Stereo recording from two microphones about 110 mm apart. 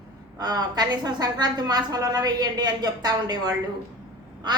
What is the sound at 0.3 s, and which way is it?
A woman's voice, 35° right (ahead or behind).